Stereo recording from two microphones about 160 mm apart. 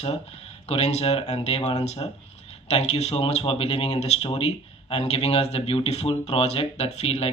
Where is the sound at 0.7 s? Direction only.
40° left (ahead or behind).